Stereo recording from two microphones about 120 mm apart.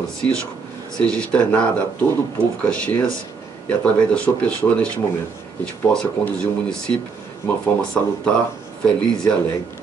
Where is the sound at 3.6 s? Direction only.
10° left (ahead or behind).